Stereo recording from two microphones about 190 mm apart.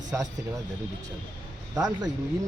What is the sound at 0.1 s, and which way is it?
Speech, 10° right (ahead or behind).